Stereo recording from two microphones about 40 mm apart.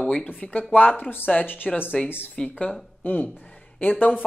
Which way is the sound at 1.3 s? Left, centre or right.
Left.